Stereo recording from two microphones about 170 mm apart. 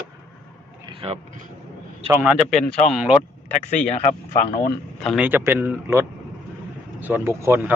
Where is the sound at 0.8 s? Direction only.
30° right (ahead or behind).